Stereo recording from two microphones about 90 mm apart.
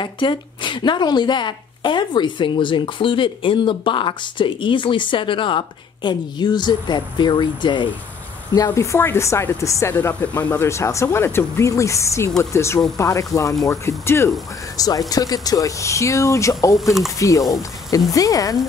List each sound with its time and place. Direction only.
0.0 s a woman's voice: 60° left (ahead or behind)
6.0 s a woman's voice: 55° left (ahead or behind)
8.7 s speech: 30° left (ahead or behind)
9.9 s speech: 20° left (ahead or behind)
10.6 s speech: 30° left (ahead or behind)
14.8 s speech: 45° left (ahead or behind)